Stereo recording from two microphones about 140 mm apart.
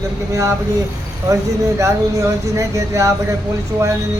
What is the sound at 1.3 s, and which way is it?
Speech, 20° right (ahead or behind).